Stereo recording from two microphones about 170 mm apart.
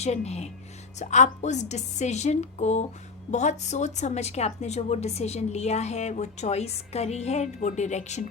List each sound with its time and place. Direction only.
0.0 s a woman's voice: 40° left (ahead or behind)